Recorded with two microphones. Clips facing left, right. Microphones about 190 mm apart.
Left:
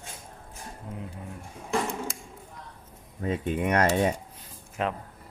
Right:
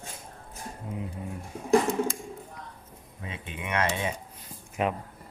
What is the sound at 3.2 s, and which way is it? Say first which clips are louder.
Speech: left 12 dB; 40° left (ahead or behind).